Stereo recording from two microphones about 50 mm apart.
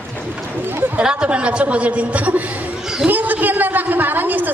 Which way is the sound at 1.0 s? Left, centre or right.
Centre.